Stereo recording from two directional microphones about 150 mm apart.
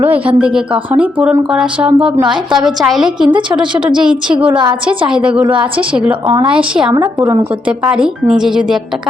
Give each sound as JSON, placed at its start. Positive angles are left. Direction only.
{"t": 0.0, "sound": "a woman's voice", "side_deg": -10}
{"t": 6.2, "sound": "a woman's voice", "side_deg": -30}
{"t": 6.5, "sound": "a woman's voice", "side_deg": -5}
{"t": 7.0, "sound": "a woman's voice", "side_deg": -30}
{"t": 7.9, "sound": "a woman's voice", "side_deg": -5}